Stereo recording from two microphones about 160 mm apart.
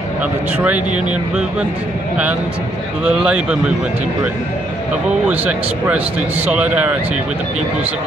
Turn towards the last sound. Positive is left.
turn(degrees=-10)  # may be behind; listen again after turning